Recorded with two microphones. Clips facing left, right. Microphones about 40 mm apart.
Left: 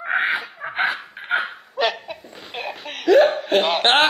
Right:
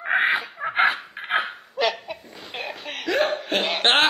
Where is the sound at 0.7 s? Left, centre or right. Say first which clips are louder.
Right 2 dB; right.